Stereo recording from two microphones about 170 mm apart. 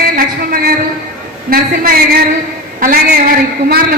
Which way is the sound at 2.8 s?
55° right (ahead or behind).